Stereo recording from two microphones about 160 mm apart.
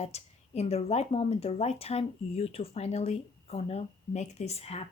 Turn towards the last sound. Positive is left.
turn(degrees=40)  # may be behind; listen again after turning